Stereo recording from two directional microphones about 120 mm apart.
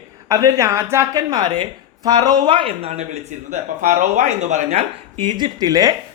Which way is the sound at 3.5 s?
90° right.